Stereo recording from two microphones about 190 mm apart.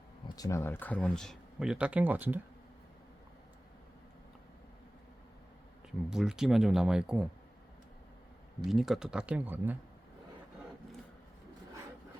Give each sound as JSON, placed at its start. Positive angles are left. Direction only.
{"t": 0.3, "sound": "speech", "side_deg": 15}
{"t": 6.1, "sound": "speech", "side_deg": -5}
{"t": 8.7, "sound": "speech", "side_deg": 0}